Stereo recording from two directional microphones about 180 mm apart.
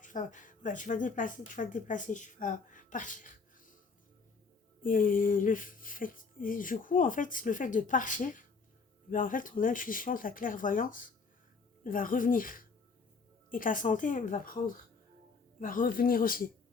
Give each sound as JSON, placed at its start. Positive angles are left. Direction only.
{"t": 0.0, "sound": "speech", "side_deg": 45}
{"t": 4.8, "sound": "music", "side_deg": 50}